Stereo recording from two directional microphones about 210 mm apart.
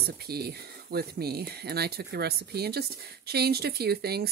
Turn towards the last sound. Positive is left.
turn(degrees=-50)  # may be behind; listen again after turning